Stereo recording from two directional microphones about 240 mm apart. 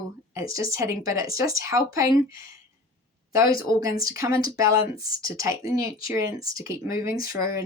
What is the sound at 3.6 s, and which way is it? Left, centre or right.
Speech, centre.